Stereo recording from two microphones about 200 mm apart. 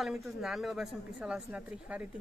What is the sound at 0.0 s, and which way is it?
Speech, centre (ahead or behind).